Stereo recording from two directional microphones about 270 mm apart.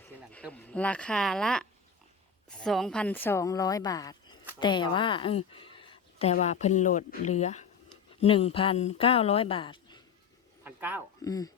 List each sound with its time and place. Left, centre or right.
0.0 s a woman's voice: centre
10.6 s a sound: centre
11.2 s speech: centre